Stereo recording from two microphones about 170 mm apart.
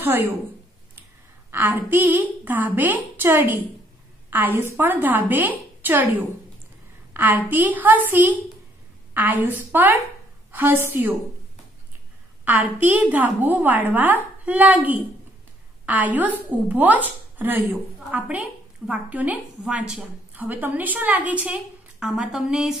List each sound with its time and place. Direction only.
1.5 s a woman's voice: 10° right (ahead or behind)
7.2 s a woman's voice: 10° right (ahead or behind)
12.4 s a woman's voice: 10° right (ahead or behind)